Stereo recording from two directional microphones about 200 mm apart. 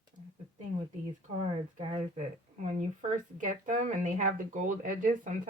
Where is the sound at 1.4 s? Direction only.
30° right (ahead or behind).